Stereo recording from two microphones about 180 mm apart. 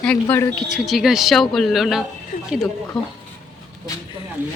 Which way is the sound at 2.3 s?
45° left (ahead or behind).